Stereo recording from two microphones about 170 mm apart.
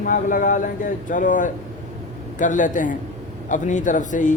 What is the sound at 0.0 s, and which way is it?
A man's voice, 50° left (ahead or behind).